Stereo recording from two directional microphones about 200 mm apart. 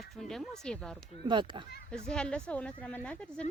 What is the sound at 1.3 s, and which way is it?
Speech, 25° right (ahead or behind).